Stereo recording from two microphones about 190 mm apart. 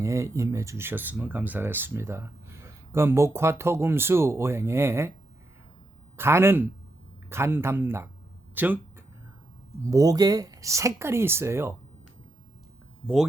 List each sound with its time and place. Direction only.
0.0 s speech: 15° right (ahead or behind)
6.1 s speech: 10° right (ahead or behind)
9.8 s speech: 15° right (ahead or behind)